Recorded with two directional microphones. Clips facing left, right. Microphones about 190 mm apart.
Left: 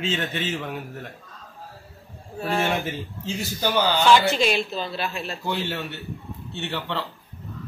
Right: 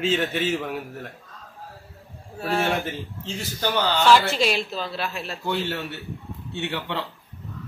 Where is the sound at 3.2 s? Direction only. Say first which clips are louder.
Left 2 dB; 10° left (ahead or behind).